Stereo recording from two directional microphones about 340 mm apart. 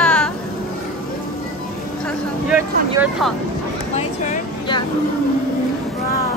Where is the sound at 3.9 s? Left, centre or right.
Centre.